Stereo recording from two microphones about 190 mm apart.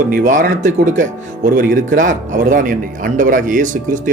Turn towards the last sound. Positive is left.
turn(degrees=-45)  # may be behind; listen again after turning